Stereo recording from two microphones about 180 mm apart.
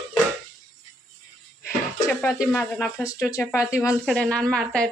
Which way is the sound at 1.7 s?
15° left (ahead or behind).